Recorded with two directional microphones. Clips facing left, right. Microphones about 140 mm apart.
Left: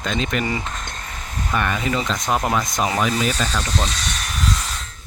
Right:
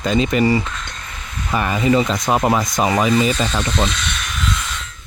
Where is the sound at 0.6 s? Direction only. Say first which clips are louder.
Even; 40° left (ahead or behind).